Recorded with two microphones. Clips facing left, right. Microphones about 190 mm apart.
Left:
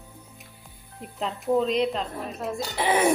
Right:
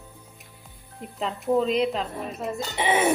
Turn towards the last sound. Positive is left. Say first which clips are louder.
# even
turn(degrees=-5)  # may be behind; listen again after turning